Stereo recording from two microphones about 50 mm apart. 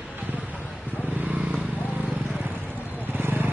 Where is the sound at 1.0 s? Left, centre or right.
Right.